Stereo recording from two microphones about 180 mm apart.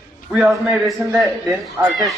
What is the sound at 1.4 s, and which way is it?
Speech, 5° right (ahead or behind).